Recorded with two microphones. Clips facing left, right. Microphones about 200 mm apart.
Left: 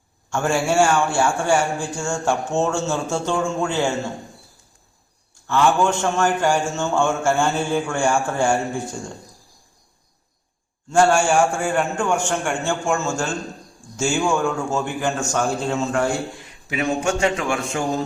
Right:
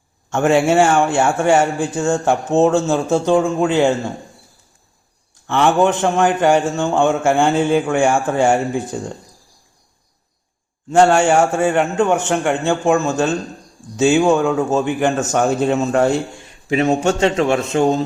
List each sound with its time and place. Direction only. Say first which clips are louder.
0.3 s speech: right 7 dB; 20° right (ahead or behind)
5.3 s speech: right 3 dB; 20° right (ahead or behind)
10.8 s a man's voice: right 4 dB; 20° right (ahead or behind)
16.6 s speech: right 6 dB; 30° right (ahead or behind)